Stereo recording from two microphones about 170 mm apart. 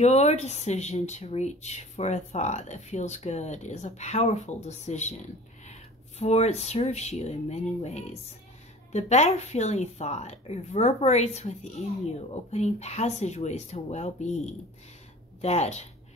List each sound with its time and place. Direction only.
0.0 s speech: 40° left (ahead or behind)
15.4 s speech: 40° left (ahead or behind)